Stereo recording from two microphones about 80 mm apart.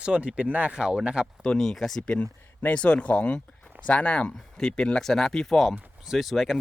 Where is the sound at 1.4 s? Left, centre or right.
Centre.